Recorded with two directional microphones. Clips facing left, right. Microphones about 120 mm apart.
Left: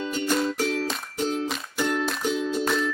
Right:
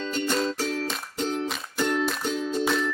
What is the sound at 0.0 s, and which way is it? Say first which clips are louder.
Music: left 1 dB; 10° left (ahead or behind).